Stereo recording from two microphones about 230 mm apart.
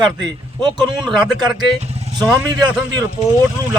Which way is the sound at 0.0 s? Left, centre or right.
Centre.